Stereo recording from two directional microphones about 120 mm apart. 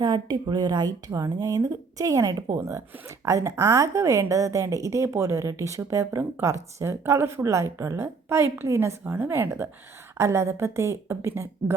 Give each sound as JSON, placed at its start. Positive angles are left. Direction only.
{"t": 0.0, "sound": "speech", "side_deg": -35}